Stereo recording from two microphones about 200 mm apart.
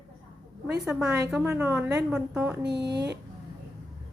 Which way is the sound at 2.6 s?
60° right (ahead or behind).